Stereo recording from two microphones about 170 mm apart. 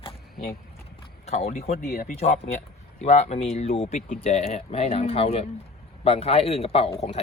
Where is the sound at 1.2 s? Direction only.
40° left (ahead or behind).